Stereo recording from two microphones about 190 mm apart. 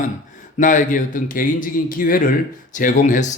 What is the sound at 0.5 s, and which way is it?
Speech, 45° left (ahead or behind).